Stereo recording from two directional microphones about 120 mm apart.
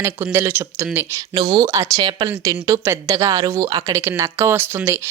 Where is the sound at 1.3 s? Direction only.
35° right (ahead or behind).